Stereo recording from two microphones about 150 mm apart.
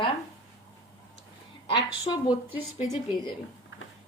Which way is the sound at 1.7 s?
30° left (ahead or behind).